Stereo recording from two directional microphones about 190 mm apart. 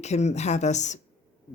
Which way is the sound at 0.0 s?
35° left (ahead or behind).